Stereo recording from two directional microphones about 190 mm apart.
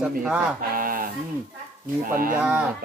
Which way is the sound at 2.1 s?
50° right (ahead or behind).